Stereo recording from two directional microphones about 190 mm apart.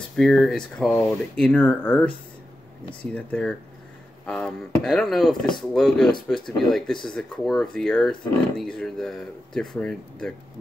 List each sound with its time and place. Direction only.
0.1 s speech: centre (ahead or behind)